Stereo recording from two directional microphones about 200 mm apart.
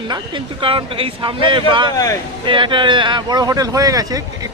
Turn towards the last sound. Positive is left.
turn(degrees=-15)  # may be behind; listen again after turning